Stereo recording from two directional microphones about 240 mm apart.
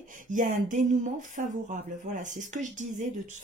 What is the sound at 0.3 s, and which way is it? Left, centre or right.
Speech, right.